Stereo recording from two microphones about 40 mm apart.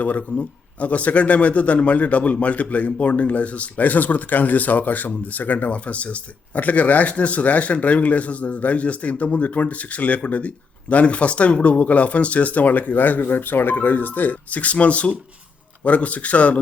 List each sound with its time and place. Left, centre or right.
0.0 s a man's voice: left